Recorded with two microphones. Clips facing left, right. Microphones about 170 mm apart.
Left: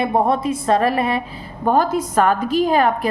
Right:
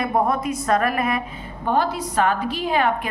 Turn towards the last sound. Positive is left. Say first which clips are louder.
# left 5 dB
turn(degrees=40)  # may be behind; listen again after turning